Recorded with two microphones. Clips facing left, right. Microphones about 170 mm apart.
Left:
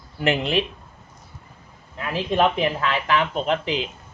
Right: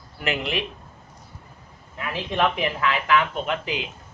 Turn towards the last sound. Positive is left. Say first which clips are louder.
# left 4 dB
turn(degrees=30)  # may be behind; listen again after turning